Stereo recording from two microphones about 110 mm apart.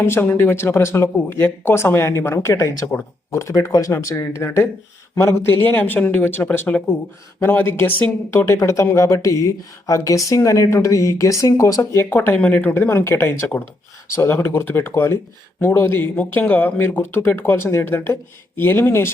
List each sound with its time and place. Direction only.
0.0 s speech: 20° left (ahead or behind)